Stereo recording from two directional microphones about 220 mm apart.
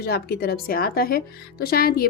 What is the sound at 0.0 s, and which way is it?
Speech, 45° left (ahead or behind).